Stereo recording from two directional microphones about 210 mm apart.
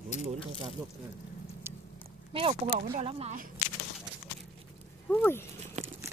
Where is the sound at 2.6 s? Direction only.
40° right (ahead or behind).